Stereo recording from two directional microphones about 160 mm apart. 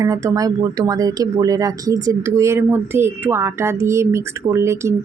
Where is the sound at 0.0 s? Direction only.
20° right (ahead or behind).